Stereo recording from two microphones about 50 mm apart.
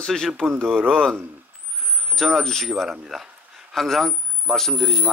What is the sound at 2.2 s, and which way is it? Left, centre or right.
A man's voice, centre.